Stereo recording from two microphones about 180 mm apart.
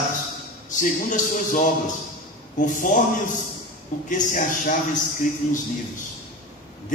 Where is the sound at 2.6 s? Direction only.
45° left (ahead or behind).